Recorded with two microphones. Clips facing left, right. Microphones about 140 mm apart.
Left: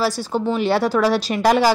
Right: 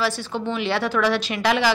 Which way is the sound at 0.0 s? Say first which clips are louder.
Left 4 dB; 40° left (ahead or behind).